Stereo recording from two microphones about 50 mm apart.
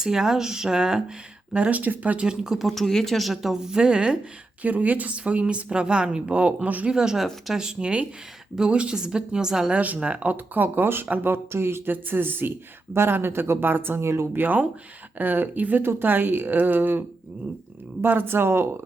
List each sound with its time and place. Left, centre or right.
0.0 s a woman's voice: centre
1.5 s speech: right
2.1 s a woman's voice: centre
2.6 s speech: centre
4.6 s speech: right
6.9 s a woman's voice: centre
9.7 s speech: right
10.3 s speech: right
11.0 s speech: right
11.3 s speech: right
11.9 s speech: right
12.9 s speech: right
14.3 s speech: right
18.0 s speech: right